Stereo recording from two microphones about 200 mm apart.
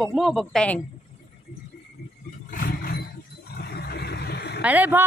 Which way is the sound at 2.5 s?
45° left (ahead or behind).